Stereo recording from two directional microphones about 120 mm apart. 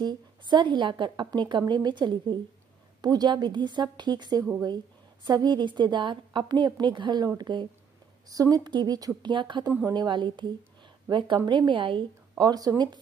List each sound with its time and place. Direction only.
0.0 s a woman's voice: 40° right (ahead or behind)